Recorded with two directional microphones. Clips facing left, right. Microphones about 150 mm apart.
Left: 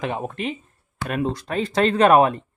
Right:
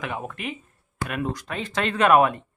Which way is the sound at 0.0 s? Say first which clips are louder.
Left 5 dB; 30° left (ahead or behind).